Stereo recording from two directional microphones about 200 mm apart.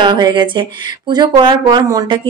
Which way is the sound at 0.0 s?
25° right (ahead or behind).